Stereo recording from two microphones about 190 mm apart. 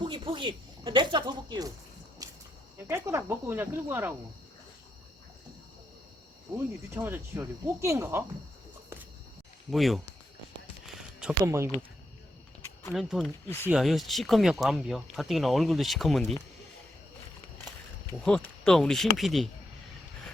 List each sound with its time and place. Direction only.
0.0 s speech: 25° right (ahead or behind)
2.2 s a sound: 20° right (ahead or behind)
2.8 s speech: 15° right (ahead or behind)
6.9 s speech: 10° right (ahead or behind)
9.7 s speech: centre (ahead or behind)
10.8 s a sound: 5° right (ahead or behind)
12.9 s speech: centre (ahead or behind)
18.3 s speech: 5° left (ahead or behind)